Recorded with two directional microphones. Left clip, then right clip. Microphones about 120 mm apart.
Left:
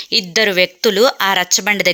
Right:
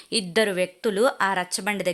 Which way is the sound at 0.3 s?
20° left (ahead or behind).